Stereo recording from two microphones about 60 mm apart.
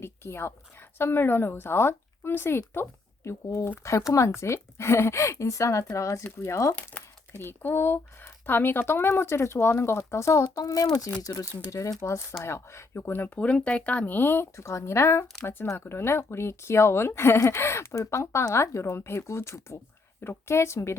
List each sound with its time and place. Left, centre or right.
0.0 s speech: left
3.2 s speech: left
7.0 s crumpling: left
7.3 s speech: left
11.7 s speech: left
13.3 s speech: left
14.5 s speech: left
15.6 s speech: left
15.9 s speech: left